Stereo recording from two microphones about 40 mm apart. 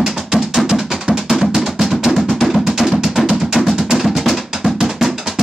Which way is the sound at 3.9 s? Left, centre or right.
Centre.